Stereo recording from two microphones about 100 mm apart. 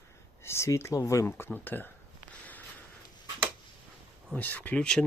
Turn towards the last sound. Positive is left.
turn(degrees=10)  # may be behind; listen again after turning